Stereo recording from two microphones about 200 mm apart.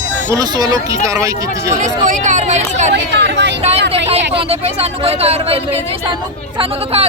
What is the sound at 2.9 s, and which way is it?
Speech, 60° right (ahead or behind).